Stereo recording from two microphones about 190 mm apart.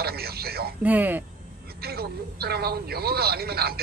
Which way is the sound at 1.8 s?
55° right (ahead or behind).